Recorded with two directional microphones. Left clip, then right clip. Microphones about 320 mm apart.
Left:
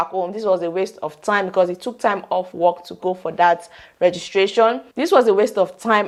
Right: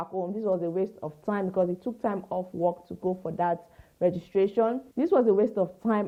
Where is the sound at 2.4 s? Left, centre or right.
Left.